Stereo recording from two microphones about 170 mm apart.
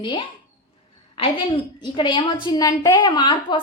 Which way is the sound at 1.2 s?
30° left (ahead or behind).